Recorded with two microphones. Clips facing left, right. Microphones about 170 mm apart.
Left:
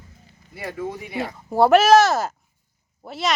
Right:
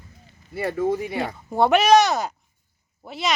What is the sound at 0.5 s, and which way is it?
Speech, 50° right (ahead or behind).